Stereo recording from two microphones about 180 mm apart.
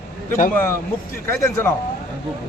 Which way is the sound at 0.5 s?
15° left (ahead or behind).